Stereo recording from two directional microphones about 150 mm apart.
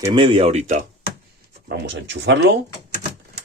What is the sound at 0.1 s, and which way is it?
Speech, 35° right (ahead or behind).